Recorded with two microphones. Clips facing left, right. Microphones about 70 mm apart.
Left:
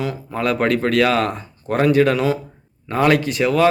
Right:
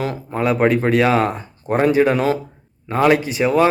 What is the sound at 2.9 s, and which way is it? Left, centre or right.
Speech, centre.